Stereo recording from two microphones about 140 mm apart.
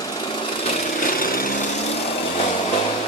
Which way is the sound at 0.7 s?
65° left (ahead or behind).